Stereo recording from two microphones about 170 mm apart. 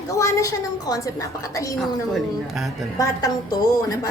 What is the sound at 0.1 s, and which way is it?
A woman's voice, 20° left (ahead or behind).